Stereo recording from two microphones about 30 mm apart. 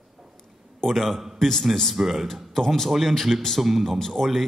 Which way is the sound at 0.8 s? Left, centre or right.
Centre.